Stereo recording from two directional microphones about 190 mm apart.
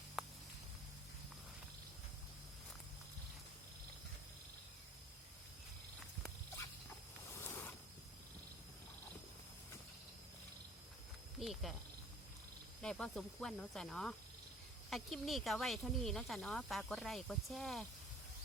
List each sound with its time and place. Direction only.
7.4 s zipper: 10° left (ahead or behind)
11.3 s insect: centre (ahead or behind)
12.8 s speech: 5° left (ahead or behind)